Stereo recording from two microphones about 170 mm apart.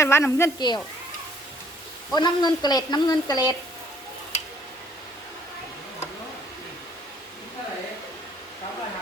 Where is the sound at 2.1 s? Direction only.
25° left (ahead or behind).